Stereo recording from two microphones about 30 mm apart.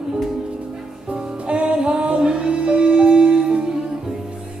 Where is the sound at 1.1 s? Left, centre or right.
Right.